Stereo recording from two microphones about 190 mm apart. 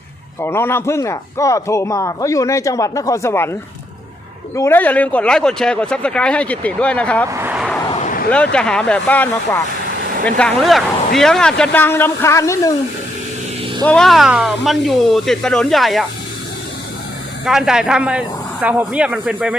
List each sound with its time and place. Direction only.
0.4 s speech: 15° left (ahead or behind)
7.3 s vehicle: 10° right (ahead or behind)
7.9 s a sound: 35° left (ahead or behind)
8.5 s speech: 5° left (ahead or behind)
13.8 s speech: 5° left (ahead or behind)
17.4 s speech: 5° right (ahead or behind)